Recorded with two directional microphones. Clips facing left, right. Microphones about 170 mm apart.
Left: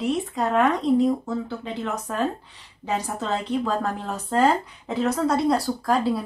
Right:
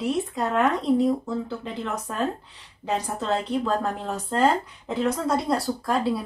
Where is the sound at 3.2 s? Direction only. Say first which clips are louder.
Even; centre (ahead or behind).